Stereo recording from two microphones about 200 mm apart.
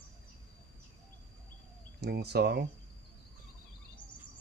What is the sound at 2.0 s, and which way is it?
Speech, 55° right (ahead or behind).